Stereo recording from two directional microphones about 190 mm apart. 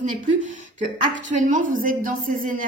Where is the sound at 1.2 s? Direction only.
40° right (ahead or behind).